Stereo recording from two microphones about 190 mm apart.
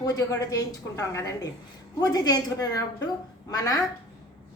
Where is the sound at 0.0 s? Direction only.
20° left (ahead or behind).